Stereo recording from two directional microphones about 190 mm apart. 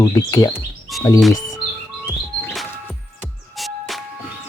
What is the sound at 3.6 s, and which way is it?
Music, centre (ahead or behind).